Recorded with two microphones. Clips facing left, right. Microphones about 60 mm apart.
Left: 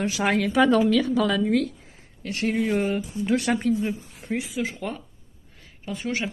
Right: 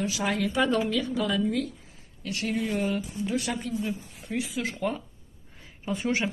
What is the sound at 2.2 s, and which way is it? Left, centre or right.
Speech, left.